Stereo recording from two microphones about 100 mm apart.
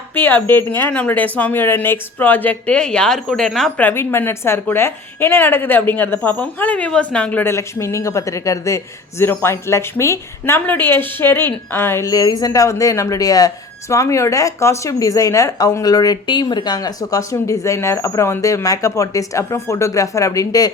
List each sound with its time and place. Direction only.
0.1 s speech: 20° left (ahead or behind); by 3.7 s 5° left (ahead or behind)
3.8 s a man's voice: 20° left (ahead or behind)
7.5 s a man's voice: 30° left (ahead or behind)
12.1 s speech: 40° left (ahead or behind)
16.2 s speech: 50° left (ahead or behind)